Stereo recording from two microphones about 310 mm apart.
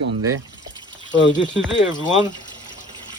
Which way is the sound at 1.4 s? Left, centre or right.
Left.